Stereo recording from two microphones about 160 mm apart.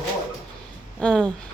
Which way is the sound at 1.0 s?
5° left (ahead or behind).